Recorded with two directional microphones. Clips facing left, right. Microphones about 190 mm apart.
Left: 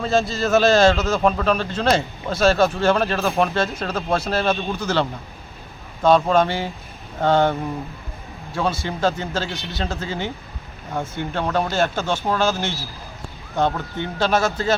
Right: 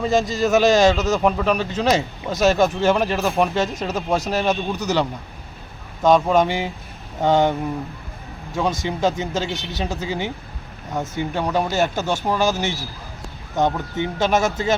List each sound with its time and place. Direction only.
0.0 s a man's voice: 15° right (ahead or behind)
8.5 s a man's voice: 15° right (ahead or behind)